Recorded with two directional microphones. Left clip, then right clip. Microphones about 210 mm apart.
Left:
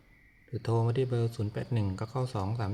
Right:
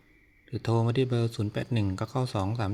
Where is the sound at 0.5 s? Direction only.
30° right (ahead or behind).